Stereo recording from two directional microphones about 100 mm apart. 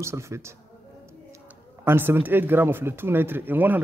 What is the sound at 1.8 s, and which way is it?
Speech, 20° right (ahead or behind).